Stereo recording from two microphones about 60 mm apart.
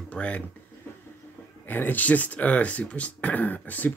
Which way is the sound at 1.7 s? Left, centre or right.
Left.